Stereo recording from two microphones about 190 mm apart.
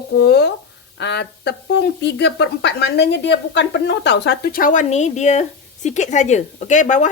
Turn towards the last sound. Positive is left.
turn(degrees=40)  # may be behind; listen again after turning